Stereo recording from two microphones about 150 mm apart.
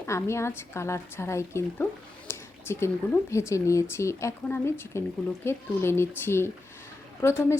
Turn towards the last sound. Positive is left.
turn(degrees=15)  # may be behind; listen again after turning